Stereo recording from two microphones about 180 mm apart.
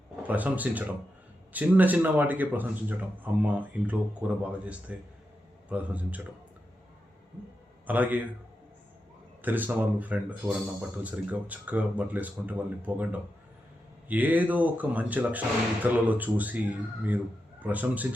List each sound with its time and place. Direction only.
0.2 s speech: 10° right (ahead or behind)
7.9 s speech: 10° right (ahead or behind)
9.4 s speech: 10° right (ahead or behind)
17.6 s speech: 10° right (ahead or behind)